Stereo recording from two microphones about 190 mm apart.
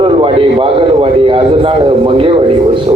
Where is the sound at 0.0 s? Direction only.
25° right (ahead or behind).